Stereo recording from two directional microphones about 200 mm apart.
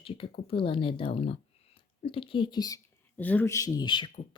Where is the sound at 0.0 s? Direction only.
25° left (ahead or behind).